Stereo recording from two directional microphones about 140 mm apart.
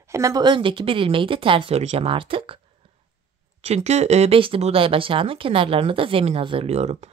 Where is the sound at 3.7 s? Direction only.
50° right (ahead or behind).